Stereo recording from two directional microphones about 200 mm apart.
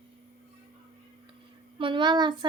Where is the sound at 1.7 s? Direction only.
25° right (ahead or behind).